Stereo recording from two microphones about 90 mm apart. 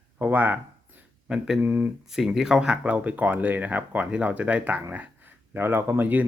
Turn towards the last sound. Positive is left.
turn(degrees=-20)  # may be behind; listen again after turning